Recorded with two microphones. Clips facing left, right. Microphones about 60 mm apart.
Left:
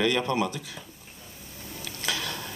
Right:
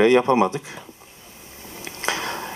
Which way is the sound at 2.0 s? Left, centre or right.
Right.